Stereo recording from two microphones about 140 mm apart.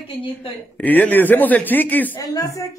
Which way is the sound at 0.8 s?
15° left (ahead or behind).